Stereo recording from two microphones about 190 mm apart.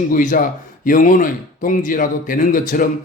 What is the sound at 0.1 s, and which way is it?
A man's voice, 45° left (ahead or behind).